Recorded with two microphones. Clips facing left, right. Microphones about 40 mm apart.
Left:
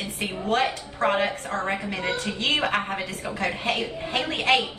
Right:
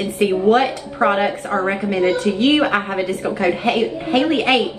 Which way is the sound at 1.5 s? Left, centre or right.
Centre.